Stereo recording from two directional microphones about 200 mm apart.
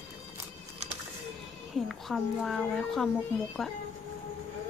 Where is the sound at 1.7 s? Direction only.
Centre (ahead or behind).